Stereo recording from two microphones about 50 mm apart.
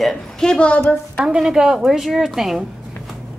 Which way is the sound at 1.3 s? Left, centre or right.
Centre.